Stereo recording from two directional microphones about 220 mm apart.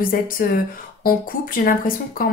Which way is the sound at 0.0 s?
40° left (ahead or behind).